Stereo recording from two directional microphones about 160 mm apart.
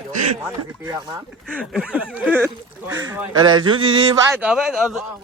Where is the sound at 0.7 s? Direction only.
20° right (ahead or behind).